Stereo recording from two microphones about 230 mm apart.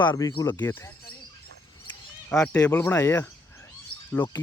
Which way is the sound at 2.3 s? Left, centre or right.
Centre.